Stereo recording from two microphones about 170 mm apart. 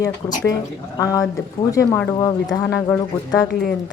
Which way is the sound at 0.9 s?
20° left (ahead or behind).